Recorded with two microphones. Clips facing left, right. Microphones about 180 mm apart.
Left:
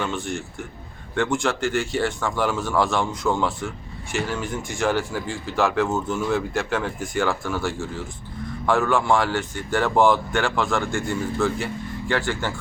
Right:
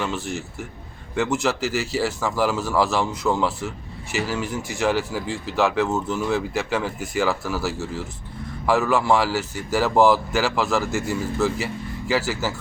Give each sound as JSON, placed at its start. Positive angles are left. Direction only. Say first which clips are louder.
{"t": 0.0, "sound": "speech", "louder": "even", "side_deg": 0}